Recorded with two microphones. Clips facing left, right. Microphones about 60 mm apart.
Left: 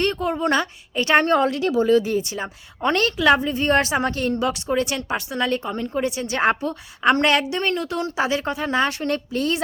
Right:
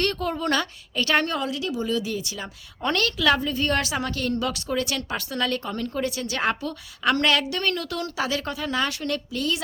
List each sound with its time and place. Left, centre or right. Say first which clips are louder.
0.0 s speech: left 4 dB; left
1.5 s speech: left 8 dB; left